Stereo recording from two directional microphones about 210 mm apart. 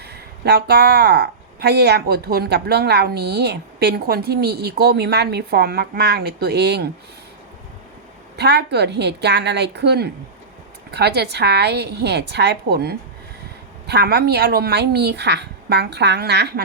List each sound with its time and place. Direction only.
0.0 s speech: 50° right (ahead or behind)
8.4 s speech: 55° right (ahead or behind)